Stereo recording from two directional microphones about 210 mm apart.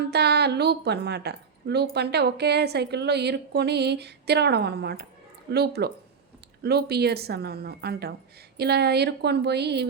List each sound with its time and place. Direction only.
0.1 s a woman's voice: 50° right (ahead or behind)